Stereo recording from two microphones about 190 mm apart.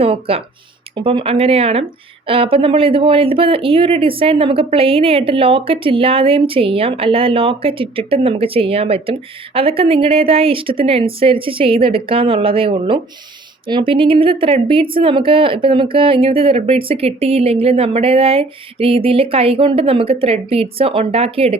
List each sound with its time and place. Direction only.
0.0 s speech: 30° right (ahead or behind)